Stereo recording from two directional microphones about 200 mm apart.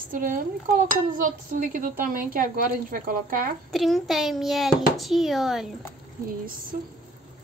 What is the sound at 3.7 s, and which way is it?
A child's voice, centre (ahead or behind).